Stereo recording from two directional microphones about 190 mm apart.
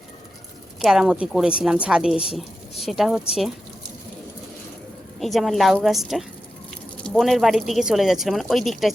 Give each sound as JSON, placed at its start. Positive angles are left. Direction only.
{"t": 0.8, "sound": "a woman's voice", "side_deg": 0}
{"t": 5.2, "sound": "a woman's voice", "side_deg": 0}